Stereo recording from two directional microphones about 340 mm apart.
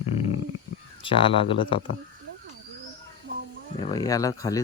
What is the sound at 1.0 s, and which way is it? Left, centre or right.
Speech, centre.